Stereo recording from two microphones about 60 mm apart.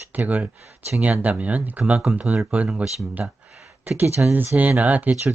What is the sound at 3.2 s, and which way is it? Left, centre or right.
Speech, centre.